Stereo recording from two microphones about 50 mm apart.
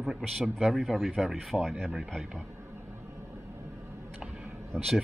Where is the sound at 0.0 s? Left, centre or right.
Centre.